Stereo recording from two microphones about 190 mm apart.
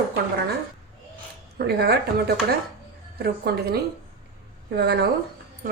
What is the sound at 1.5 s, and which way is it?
A woman's voice, 55° right (ahead or behind).